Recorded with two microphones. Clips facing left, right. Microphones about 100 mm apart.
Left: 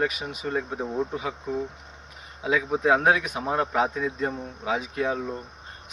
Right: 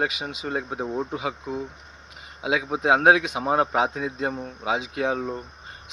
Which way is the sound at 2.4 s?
75° right (ahead or behind).